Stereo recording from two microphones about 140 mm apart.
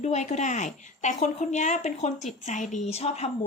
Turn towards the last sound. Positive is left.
turn(degrees=50)  # may be behind; listen again after turning